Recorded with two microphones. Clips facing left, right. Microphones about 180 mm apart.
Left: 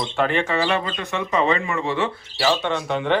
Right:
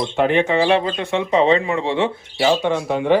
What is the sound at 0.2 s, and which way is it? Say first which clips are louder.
Speech: right 5 dB; 15° right (ahead or behind).